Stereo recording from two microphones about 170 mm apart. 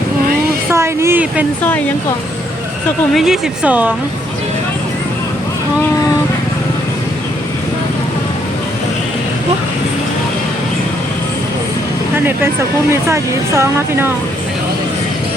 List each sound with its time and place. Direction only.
0.7 s a sound: 15° right (ahead or behind)
3.2 s speech: 5° right (ahead or behind)
12.1 s vehicle: 10° right (ahead or behind)
12.9 s speech: 15° right (ahead or behind)